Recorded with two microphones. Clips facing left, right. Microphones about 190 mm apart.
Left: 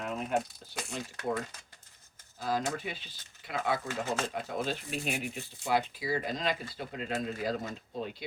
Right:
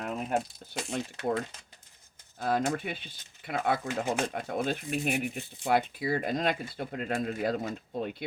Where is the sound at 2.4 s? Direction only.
55° right (ahead or behind).